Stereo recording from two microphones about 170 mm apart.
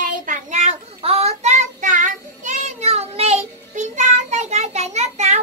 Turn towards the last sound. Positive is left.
turn(degrees=-40)  # may be behind; listen again after turning